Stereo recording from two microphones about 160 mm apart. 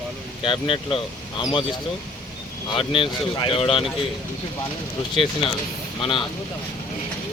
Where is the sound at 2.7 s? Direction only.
35° left (ahead or behind).